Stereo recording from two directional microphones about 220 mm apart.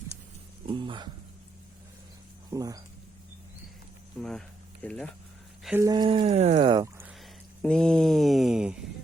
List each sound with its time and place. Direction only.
0.7 s a sound: 20° right (ahead or behind)
2.5 s speech: 15° right (ahead or behind)
4.2 s speech: centre (ahead or behind)
5.6 s speech: 10° right (ahead or behind)
7.6 s speech: 5° left (ahead or behind)